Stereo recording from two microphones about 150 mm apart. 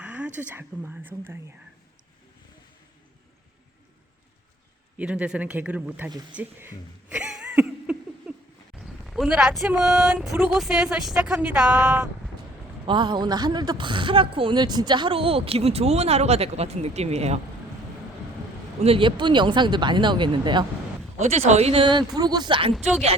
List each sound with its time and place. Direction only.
0.0 s a sound: 10° right (ahead or behind)
0.3 s a woman's voice: 15° right (ahead or behind)
4.9 s a woman's voice: 5° right (ahead or behind)
6.3 s a sound: 15° right (ahead or behind)
8.8 s speech: centre (ahead or behind)
12.8 s a man's voice: 30° right (ahead or behind)
18.8 s a man's voice: 40° right (ahead or behind)
21.2 s a man's voice: 50° right (ahead or behind); by 22.7 s 35° right (ahead or behind)
22.7 s speech: centre (ahead or behind)